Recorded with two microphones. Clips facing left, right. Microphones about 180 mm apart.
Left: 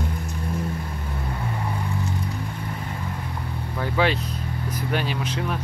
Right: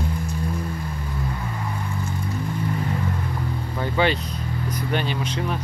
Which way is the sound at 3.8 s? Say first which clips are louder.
Right 1 dB; centre (ahead or behind).